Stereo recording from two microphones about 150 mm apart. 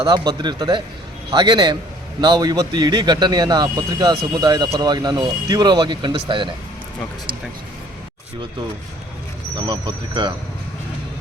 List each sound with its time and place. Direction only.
0.0 s speech: 30° right (ahead or behind)
9.6 s speech: 30° right (ahead or behind)